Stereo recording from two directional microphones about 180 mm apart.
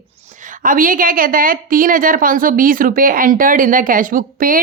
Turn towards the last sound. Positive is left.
turn(degrees=-50)  # may be behind; listen again after turning